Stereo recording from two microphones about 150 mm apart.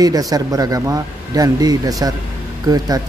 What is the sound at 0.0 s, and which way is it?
Speech, 25° right (ahead or behind).